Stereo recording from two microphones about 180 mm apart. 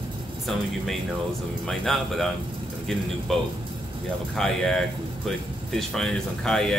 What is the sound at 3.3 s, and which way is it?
Speech, centre (ahead or behind).